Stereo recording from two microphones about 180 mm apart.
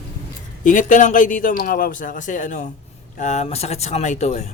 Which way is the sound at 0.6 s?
45° left (ahead or behind).